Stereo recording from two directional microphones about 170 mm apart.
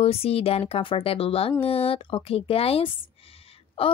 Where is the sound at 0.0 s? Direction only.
35° left (ahead or behind).